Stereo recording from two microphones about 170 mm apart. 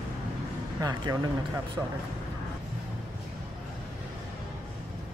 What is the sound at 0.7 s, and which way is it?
Speech, 20° right (ahead or behind).